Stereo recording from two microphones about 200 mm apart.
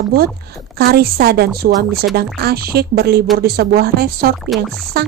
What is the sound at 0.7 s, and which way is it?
A woman's voice, 50° right (ahead or behind).